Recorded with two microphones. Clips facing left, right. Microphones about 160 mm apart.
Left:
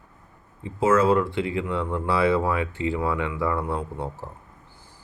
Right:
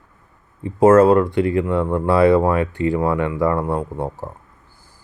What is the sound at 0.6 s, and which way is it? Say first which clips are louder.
Speech: right 9 dB; 45° right (ahead or behind).